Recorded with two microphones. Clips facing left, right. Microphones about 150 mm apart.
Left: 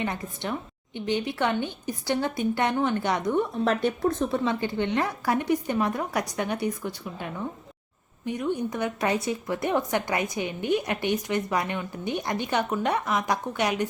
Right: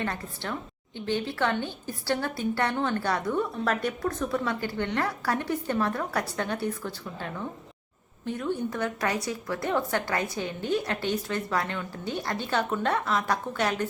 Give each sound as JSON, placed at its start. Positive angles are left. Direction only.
{"t": 0.0, "sound": "a woman's voice", "side_deg": 15}